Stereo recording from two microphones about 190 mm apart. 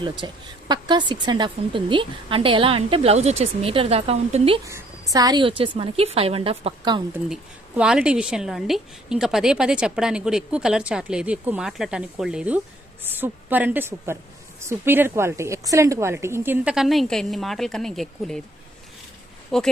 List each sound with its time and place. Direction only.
0.2 s a woman's voice: 25° right (ahead or behind)
4.6 s a woman's voice: 20° right (ahead or behind)
7.8 s a woman's voice: 5° right (ahead or behind)
19.5 s speech: 5° left (ahead or behind)